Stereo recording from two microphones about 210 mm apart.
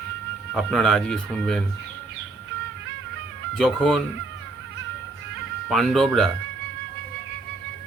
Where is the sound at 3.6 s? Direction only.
Centre (ahead or behind).